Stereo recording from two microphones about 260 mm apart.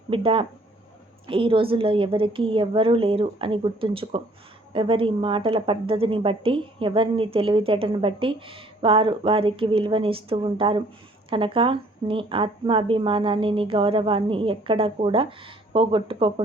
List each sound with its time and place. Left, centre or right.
0.1 s a woman's voice: right